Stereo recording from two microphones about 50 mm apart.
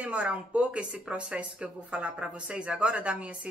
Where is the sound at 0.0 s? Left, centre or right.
Right.